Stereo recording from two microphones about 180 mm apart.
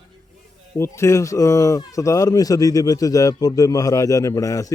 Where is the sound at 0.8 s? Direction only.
15° left (ahead or behind).